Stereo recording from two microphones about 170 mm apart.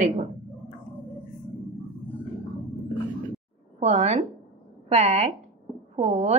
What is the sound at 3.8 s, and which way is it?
A woman's voice, 40° right (ahead or behind).